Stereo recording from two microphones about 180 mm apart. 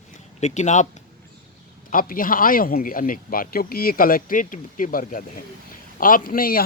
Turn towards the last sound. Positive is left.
turn(degrees=55)  # may be behind; listen again after turning